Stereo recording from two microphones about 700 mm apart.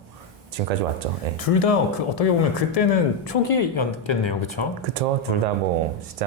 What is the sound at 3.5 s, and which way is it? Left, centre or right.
Speech, left.